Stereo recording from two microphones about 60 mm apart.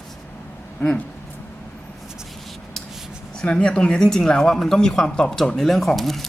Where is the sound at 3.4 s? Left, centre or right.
Centre.